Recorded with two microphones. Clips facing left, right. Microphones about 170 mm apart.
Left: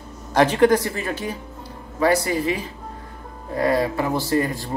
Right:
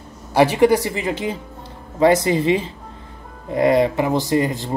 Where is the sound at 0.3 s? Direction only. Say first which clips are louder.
Right 2 dB; 10° right (ahead or behind).